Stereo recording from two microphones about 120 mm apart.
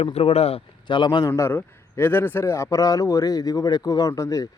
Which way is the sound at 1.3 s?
20° left (ahead or behind).